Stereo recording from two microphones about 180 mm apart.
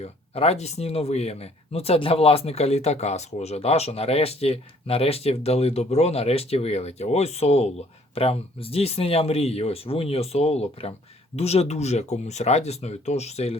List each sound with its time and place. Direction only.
0.0 s speech: 35° left (ahead or behind)